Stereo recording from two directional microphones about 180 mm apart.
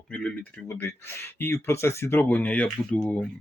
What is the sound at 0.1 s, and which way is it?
Speech, 5° left (ahead or behind).